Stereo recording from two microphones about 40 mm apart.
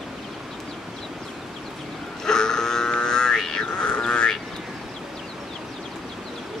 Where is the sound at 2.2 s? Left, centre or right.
Centre.